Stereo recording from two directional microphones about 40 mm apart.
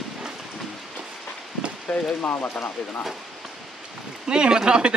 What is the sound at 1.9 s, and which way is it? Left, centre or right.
Speech, left.